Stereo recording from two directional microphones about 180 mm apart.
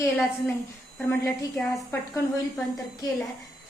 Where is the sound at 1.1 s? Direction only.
10° left (ahead or behind).